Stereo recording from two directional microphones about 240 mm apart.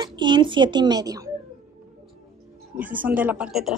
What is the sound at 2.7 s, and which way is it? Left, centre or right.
Speech, centre.